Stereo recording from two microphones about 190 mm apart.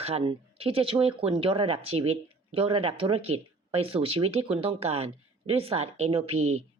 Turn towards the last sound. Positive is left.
turn(degrees=-35)  # may be behind; listen again after turning